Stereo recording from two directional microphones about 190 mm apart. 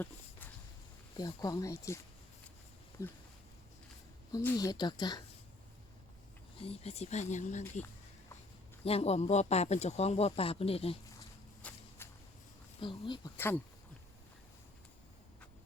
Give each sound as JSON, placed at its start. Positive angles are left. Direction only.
{"t": 1.1, "sound": "speech", "side_deg": 20}
{"t": 3.0, "sound": "speech", "side_deg": 15}
{"t": 4.3, "sound": "speech", "side_deg": 20}
{"t": 6.6, "sound": "speech", "side_deg": 30}
{"t": 8.8, "sound": "speech", "side_deg": 30}
{"t": 11.6, "sound": "walk", "side_deg": 5}
{"t": 12.0, "sound": "a sound", "side_deg": 10}
{"t": 12.8, "sound": "speech", "side_deg": 25}
{"t": 13.3, "sound": "speech", "side_deg": 10}